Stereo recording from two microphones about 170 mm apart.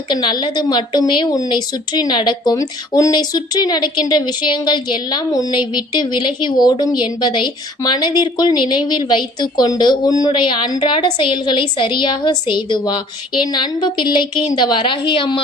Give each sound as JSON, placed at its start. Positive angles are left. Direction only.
{"t": 0.1, "sound": "a woman's voice", "side_deg": 25}